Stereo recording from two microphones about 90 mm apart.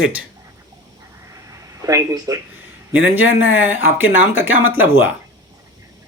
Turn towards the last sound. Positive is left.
turn(degrees=-25)  # may be behind; listen again after turning